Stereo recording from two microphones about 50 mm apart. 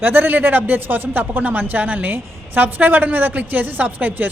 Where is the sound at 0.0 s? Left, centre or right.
Right.